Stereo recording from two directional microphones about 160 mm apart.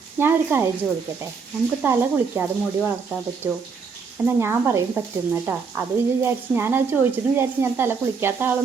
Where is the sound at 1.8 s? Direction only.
15° right (ahead or behind).